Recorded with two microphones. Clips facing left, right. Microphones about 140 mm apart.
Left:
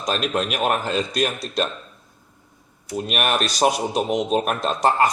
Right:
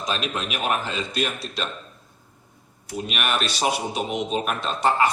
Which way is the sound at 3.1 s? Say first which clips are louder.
Left 4 dB; 45° left (ahead or behind).